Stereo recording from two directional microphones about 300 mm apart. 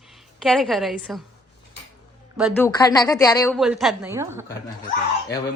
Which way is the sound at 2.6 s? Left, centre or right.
Centre.